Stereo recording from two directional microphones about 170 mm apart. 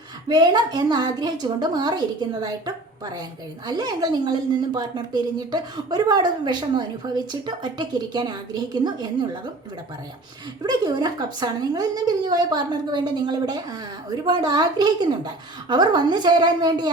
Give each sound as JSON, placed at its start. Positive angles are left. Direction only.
{"t": 0.3, "sound": "a woman's voice", "side_deg": -25}
{"t": 10.6, "sound": "a woman's voice", "side_deg": -25}